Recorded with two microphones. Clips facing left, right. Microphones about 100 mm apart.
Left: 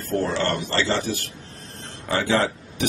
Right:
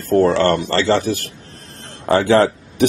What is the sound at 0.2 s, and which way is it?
Speech, 60° right (ahead or behind).